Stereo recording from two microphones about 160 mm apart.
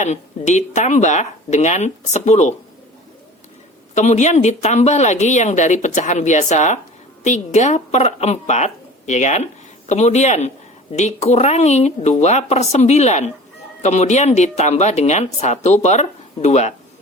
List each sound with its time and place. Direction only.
0.0 s speech: 45° left (ahead or behind)
3.9 s a woman's voice: 45° left (ahead or behind)